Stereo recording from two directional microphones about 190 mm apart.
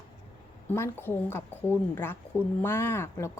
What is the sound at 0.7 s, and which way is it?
A woman's voice, 10° left (ahead or behind).